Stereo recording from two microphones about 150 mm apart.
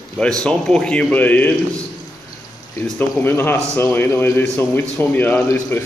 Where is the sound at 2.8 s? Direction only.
15° left (ahead or behind).